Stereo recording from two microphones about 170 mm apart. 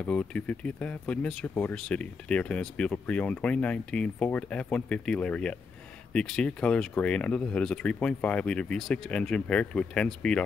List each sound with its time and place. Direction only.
0.0 s speech: 5° left (ahead or behind)